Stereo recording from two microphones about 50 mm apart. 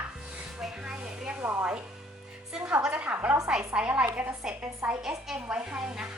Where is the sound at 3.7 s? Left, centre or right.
Right.